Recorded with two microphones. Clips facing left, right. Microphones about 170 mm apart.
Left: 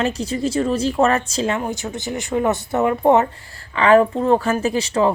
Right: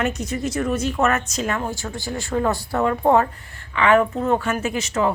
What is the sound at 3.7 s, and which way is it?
Speech, 35° left (ahead or behind).